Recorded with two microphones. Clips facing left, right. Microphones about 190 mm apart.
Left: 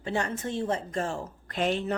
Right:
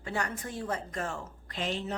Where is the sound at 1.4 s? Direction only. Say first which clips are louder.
Left 7 dB; 55° left (ahead or behind).